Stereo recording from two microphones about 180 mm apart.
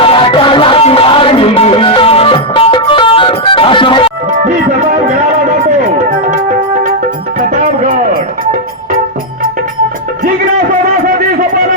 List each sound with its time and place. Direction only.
0.0 s music: 30° left (ahead or behind)
4.3 s music: 45° right (ahead or behind)
7.3 s music: 45° right (ahead or behind)
11.0 s a sound: 50° right (ahead or behind)